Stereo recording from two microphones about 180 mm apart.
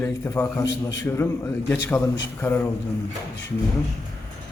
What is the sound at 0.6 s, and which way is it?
Speech, 80° left.